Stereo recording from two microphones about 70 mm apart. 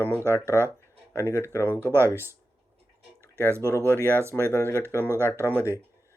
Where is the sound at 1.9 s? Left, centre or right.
Right.